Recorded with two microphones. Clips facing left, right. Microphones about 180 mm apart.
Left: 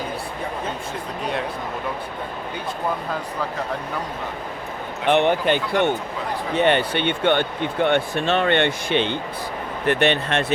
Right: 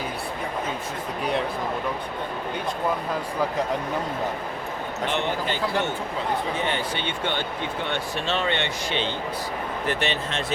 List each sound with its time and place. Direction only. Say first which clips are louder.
5.0 s speech: left 9 dB; 60° left (ahead or behind)